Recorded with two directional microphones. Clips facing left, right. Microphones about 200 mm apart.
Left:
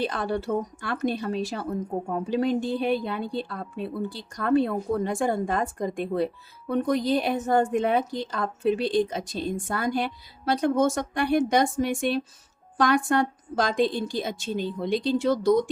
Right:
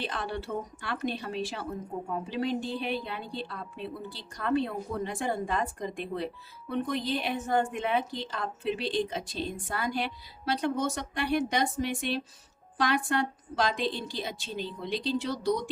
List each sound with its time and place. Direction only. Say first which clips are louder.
0.0 s a woman's voice: left 7 dB; 45° left (ahead or behind)